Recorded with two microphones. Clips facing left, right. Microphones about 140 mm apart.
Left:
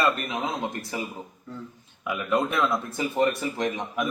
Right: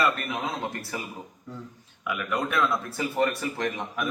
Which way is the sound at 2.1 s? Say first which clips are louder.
Left 3 dB; 25° left (ahead or behind).